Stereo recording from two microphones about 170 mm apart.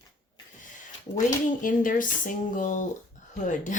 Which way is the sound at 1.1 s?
30° left (ahead or behind).